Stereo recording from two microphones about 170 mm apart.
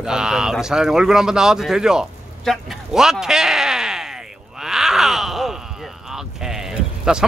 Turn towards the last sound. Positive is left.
turn(degrees=-5)  # may be behind; listen again after turning